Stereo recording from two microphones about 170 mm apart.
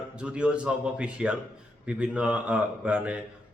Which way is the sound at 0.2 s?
5° right (ahead or behind).